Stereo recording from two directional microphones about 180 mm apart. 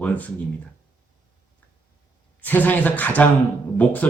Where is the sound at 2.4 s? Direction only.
10° left (ahead or behind).